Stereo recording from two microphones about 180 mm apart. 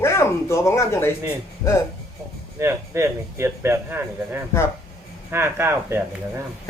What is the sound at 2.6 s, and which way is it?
Speech, 15° right (ahead or behind).